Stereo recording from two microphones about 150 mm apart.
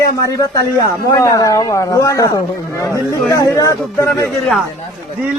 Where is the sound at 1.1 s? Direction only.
20° left (ahead or behind).